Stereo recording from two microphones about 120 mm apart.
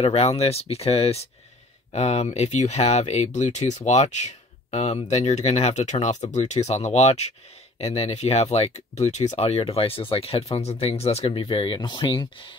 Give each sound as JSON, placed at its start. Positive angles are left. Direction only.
{"t": 0.0, "sound": "speech", "side_deg": 60}